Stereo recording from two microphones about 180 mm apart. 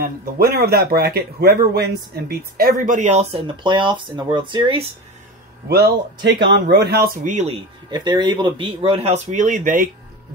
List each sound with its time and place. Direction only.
0.0 s speech: 55° right (ahead or behind); by 4.8 s 25° right (ahead or behind)
6.2 s speech: 70° right (ahead or behind)
7.2 s speech: 40° right (ahead or behind)
7.9 s speech: 25° right (ahead or behind); by 9.8 s 45° right (ahead or behind)